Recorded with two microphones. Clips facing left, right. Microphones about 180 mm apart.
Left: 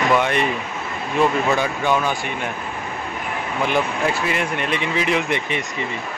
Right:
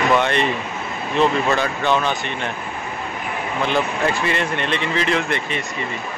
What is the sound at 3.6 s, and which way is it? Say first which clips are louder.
Speech: even; 10° left (ahead or behind).